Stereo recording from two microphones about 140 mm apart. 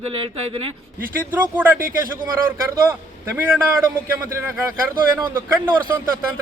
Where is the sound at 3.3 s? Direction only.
15° right (ahead or behind).